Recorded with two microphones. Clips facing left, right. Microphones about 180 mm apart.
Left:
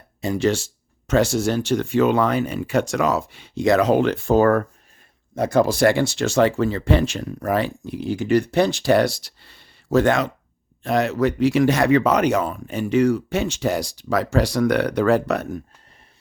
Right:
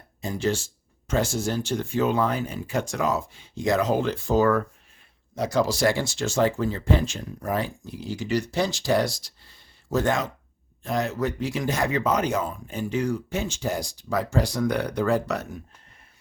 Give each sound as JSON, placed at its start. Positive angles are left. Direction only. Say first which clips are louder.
{"t": 0.2, "sound": "speech", "louder": "left 6 dB", "side_deg": 75}